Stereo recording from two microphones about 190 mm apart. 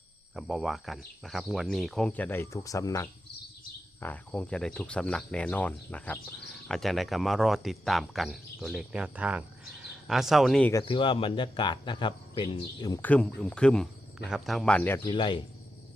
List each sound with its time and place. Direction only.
0.3 s speech: centre (ahead or behind)
10.7 s speech: 20° left (ahead or behind)
13.0 s speech: 5° left (ahead or behind)
15.0 s speech: 25° left (ahead or behind)